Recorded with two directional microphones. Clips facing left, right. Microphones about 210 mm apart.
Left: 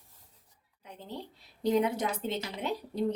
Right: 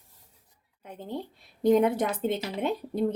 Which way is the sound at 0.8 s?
50° right (ahead or behind).